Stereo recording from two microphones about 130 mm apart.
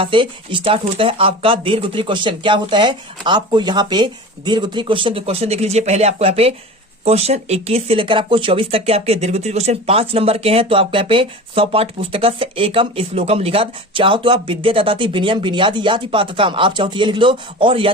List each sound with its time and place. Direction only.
0.0 s speech: 40° right (ahead or behind)